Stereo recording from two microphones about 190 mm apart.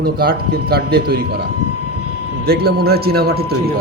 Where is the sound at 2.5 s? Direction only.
55° right (ahead or behind).